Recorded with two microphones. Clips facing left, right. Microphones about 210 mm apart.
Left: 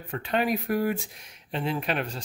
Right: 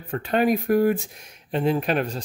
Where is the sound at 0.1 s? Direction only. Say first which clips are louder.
Right 5 dB; 45° right (ahead or behind).